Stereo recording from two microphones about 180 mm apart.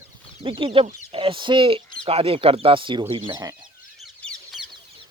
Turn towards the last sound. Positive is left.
turn(degrees=0)  # may be behind; listen again after turning